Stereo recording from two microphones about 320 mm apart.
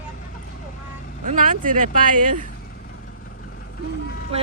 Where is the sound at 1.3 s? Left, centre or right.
Right.